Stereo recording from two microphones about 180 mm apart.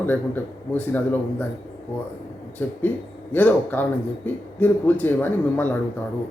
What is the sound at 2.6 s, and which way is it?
A man's voice, 10° left (ahead or behind).